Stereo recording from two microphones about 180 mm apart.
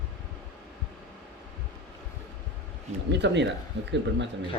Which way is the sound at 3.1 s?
75° right (ahead or behind).